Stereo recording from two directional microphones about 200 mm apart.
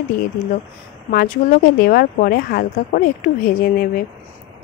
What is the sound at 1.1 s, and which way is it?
Speech, 50° left (ahead or behind).